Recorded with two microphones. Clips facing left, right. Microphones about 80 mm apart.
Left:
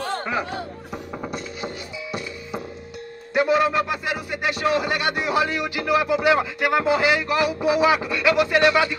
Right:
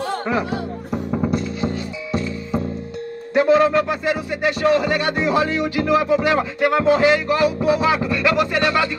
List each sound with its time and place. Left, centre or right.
1.1 s music: centre
3.3 s music: centre